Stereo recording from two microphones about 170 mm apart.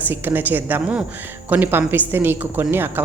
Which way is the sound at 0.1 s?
10° right (ahead or behind).